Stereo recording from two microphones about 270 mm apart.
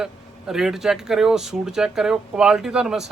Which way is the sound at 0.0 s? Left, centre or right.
Centre.